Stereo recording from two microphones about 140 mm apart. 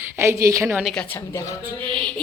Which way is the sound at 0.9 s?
10° left (ahead or behind).